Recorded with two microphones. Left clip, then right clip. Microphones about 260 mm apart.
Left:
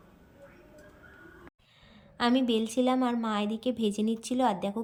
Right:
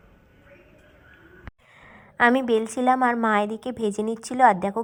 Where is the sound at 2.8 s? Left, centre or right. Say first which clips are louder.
Right 11 dB; right.